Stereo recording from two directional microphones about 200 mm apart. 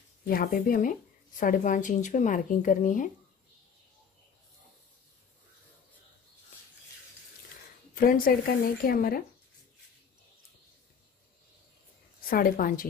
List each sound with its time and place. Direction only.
0.3 s a woman's voice: 45° left (ahead or behind)
7.9 s a woman's voice: 45° left (ahead or behind)
12.3 s a woman's voice: 45° left (ahead or behind)